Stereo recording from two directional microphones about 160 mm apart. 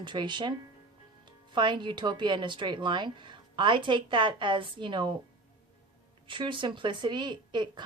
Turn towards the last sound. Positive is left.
turn(degrees=-30)  # may be behind; listen again after turning